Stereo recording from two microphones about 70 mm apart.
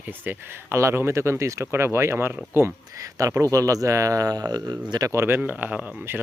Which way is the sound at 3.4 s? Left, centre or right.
Right.